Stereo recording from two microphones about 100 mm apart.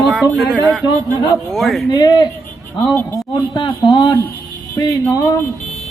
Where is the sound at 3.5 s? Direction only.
55° left (ahead or behind).